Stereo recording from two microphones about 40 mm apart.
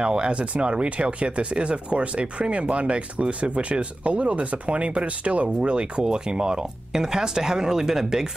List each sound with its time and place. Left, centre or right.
0.0 s speech: right